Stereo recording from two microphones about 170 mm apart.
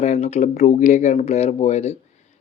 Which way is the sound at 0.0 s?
40° left (ahead or behind).